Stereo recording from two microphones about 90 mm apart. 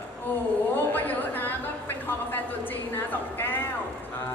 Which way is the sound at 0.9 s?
20° left (ahead or behind).